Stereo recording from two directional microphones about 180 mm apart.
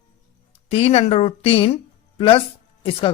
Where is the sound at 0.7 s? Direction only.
35° left (ahead or behind).